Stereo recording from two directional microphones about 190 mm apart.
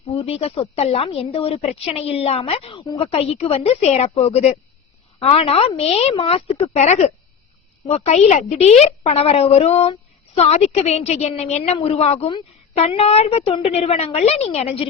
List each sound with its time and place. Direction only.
0.1 s a woman's voice: 30° left (ahead or behind)